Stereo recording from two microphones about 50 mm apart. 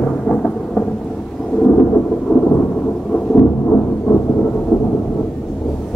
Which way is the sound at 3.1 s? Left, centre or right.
Left.